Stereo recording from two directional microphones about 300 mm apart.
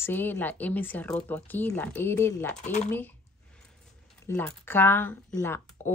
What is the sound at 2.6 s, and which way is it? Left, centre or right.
Speech, left.